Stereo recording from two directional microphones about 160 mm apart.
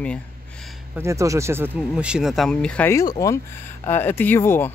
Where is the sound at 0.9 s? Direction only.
20° right (ahead or behind); by 2.9 s 5° left (ahead or behind).